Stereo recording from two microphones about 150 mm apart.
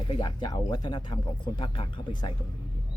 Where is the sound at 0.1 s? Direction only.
35° left (ahead or behind).